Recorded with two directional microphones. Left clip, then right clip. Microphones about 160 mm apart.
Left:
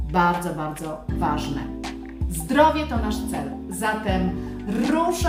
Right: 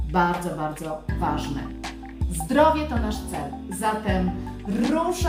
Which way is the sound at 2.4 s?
5° left (ahead or behind).